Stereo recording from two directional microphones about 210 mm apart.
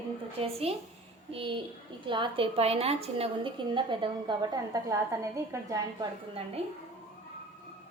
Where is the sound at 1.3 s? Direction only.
25° right (ahead or behind).